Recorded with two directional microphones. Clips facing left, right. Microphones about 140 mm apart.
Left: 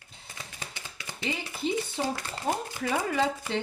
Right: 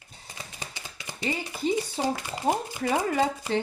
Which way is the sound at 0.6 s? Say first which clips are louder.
Right 1 dB; 20° right (ahead or behind).